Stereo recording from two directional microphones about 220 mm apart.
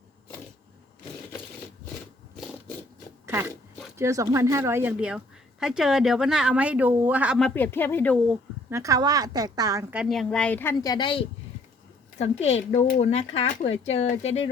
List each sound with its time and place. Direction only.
3.9 s a woman's voice: 15° right (ahead or behind); by 8.2 s 10° left (ahead or behind)
8.3 s a woman's voice: 15° right (ahead or behind)
9.9 s speech: centre (ahead or behind); by 14.5 s 30° left (ahead or behind)